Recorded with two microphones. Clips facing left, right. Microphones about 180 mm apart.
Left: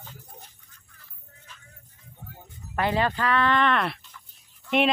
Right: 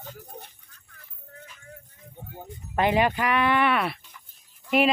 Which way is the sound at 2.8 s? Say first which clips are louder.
Right 3 dB; 15° right (ahead or behind).